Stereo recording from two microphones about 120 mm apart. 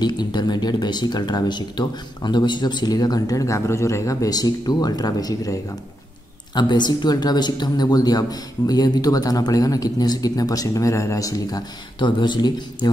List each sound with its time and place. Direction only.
0.0 s speech: 35° left (ahead or behind)